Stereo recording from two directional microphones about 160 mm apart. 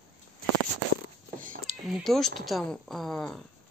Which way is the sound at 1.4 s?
55° right (ahead or behind).